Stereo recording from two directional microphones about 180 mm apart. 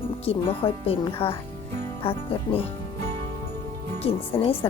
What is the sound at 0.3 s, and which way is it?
Speech, 30° left (ahead or behind).